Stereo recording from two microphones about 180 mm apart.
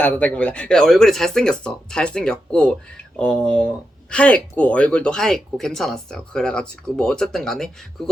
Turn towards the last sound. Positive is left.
turn(degrees=0)  # may be behind; listen again after turning